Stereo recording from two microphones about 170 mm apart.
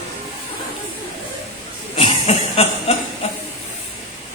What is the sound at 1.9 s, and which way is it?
Cough, 35° left (ahead or behind).